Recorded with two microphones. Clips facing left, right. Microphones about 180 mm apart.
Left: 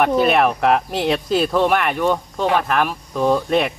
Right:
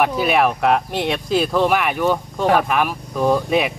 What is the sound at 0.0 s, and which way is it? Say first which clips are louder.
Speech: left 2 dB; 5° right (ahead or behind).